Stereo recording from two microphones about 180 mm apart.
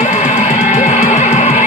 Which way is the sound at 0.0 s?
40° left (ahead or behind).